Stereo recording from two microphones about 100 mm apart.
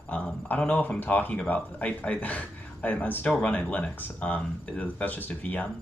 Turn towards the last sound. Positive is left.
turn(degrees=15)  # may be behind; listen again after turning